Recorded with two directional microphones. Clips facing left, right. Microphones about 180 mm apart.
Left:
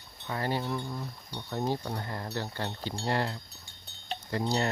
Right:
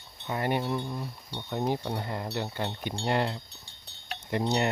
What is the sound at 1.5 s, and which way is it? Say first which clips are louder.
Speech: right 2 dB; 15° right (ahead or behind).